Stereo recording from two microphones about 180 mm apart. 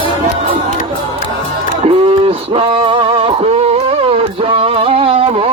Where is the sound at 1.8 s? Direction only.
30° right (ahead or behind).